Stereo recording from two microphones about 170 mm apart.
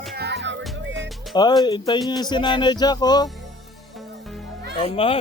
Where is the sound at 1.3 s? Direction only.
25° left (ahead or behind).